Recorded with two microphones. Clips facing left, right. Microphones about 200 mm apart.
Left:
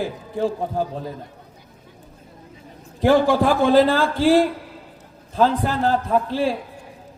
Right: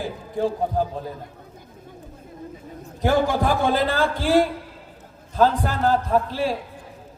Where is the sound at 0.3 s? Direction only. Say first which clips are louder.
Even; 45° right (ahead or behind).